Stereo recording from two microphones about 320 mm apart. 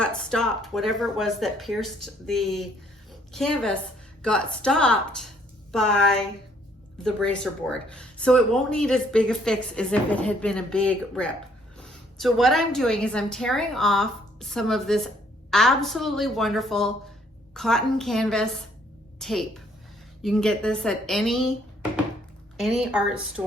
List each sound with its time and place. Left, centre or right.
0.0 s a woman's voice: centre